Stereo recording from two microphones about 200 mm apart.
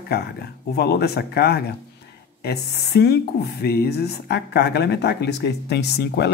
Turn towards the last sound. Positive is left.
turn(degrees=55)  # may be behind; listen again after turning